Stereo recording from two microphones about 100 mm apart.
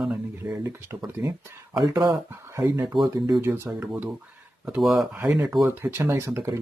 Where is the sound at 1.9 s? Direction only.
40° right (ahead or behind).